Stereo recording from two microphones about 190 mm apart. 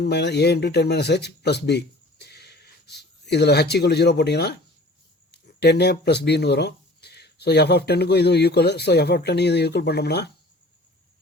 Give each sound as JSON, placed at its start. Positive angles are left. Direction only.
{"t": 0.0, "sound": "speech", "side_deg": 60}